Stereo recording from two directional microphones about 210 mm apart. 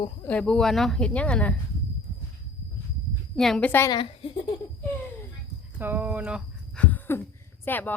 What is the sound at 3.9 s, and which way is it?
Speech, 25° left (ahead or behind).